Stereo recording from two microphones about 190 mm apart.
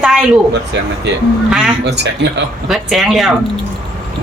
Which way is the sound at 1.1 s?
65° right (ahead or behind).